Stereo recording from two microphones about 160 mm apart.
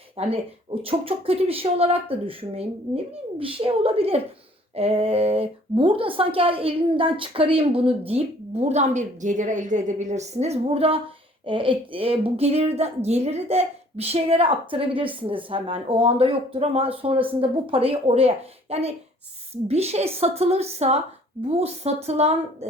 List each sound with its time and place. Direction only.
0.2 s speech: 35° right (ahead or behind)